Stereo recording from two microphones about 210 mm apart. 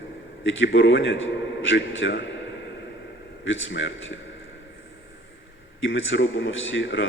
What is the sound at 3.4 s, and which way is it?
Speech, 65° left (ahead or behind).